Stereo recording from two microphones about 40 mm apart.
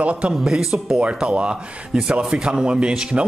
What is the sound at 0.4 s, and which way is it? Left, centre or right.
Speech, centre.